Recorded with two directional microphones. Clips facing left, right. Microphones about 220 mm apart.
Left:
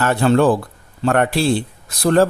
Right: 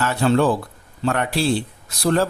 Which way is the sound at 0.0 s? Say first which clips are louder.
Left 3 dB; 55° left (ahead or behind).